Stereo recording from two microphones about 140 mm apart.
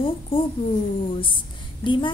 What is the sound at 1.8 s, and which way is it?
Speech, 35° left (ahead or behind).